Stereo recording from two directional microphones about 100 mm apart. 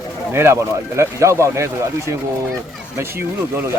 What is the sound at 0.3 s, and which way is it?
Speech, 25° right (ahead or behind).